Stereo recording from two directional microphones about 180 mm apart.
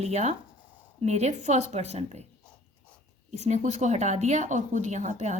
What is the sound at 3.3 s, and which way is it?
A woman's voice, 40° right (ahead or behind).